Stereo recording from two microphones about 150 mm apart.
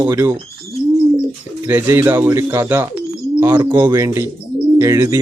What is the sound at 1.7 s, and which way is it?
Speech, 15° right (ahead or behind).